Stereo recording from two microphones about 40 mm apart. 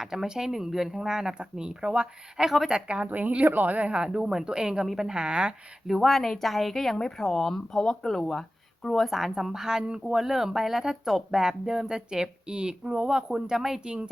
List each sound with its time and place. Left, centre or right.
0.0 s speech: centre; by 3.1 s right
3.1 s speech: right
5.9 s a woman's voice: centre
9.0 s speech: centre
13.6 s speech: centre
13.8 s speech: right